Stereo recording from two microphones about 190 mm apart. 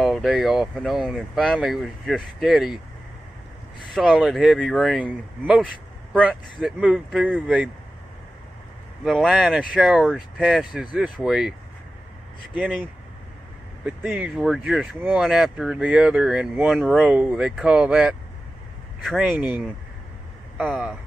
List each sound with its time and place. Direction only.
0.0 s speech: centre (ahead or behind)
3.9 s speech: centre (ahead or behind)
9.0 s speech: centre (ahead or behind)
13.8 s speech: 5° right (ahead or behind)